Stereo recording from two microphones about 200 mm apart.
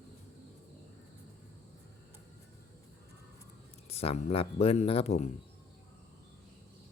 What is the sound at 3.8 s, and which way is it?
Speech, 30° left (ahead or behind).